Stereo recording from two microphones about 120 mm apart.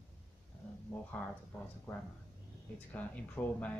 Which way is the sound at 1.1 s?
10° left (ahead or behind).